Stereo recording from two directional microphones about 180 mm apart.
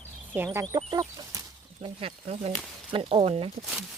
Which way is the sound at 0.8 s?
25° right (ahead or behind).